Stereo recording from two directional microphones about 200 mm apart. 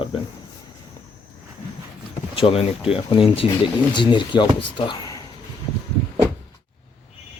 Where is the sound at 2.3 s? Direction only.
30° left (ahead or behind).